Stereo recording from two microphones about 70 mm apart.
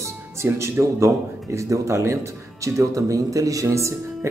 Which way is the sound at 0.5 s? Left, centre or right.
Right.